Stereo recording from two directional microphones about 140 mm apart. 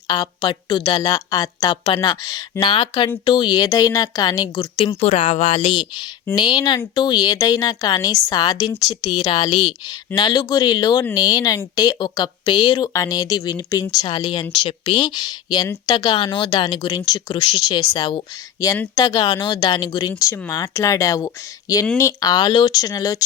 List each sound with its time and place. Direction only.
0.1 s a woman's voice: 30° left (ahead or behind)
1.7 s a woman's voice: 40° left (ahead or behind)
4.9 s a woman's voice: 50° left (ahead or behind); by 23.2 s 25° left (ahead or behind)